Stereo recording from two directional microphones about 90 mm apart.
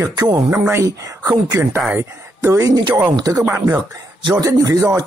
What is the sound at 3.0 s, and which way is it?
Speech, 45° right (ahead or behind).